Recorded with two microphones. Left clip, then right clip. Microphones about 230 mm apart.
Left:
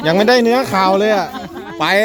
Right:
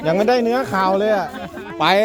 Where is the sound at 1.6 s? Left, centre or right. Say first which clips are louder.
Left 1 dB; centre.